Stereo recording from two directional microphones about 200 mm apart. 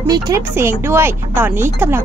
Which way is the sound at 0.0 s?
15° right (ahead or behind).